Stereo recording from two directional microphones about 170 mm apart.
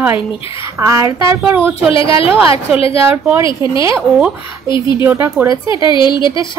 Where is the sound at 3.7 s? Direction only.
20° right (ahead or behind).